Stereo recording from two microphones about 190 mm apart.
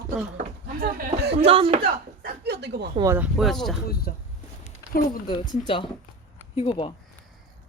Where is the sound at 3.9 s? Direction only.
55° left (ahead or behind).